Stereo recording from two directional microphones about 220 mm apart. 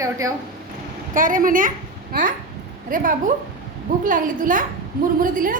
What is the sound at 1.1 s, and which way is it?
A woman's voice, 40° right (ahead or behind).